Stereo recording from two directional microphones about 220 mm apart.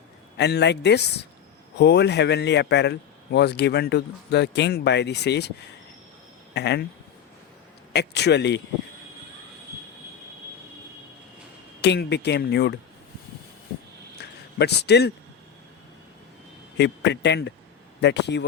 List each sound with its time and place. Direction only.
0.3 s a man's voice: 50° left (ahead or behind)
7.9 s a man's voice: 50° left (ahead or behind)
11.8 s a man's voice: 50° left (ahead or behind)
14.2 s a sound: 50° left (ahead or behind)
16.7 s a man's voice: 50° left (ahead or behind)